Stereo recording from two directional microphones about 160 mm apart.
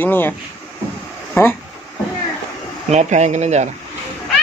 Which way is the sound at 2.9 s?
45° right (ahead or behind).